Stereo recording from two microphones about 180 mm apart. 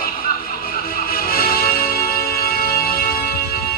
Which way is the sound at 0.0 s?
55° left (ahead or behind).